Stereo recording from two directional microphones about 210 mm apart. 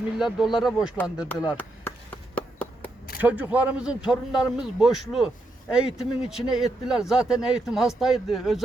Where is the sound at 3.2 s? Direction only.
5° right (ahead or behind).